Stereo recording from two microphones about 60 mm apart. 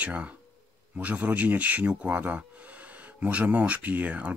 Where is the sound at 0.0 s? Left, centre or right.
Right.